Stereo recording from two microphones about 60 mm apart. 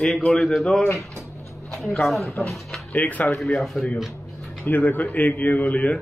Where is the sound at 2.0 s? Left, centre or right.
Centre.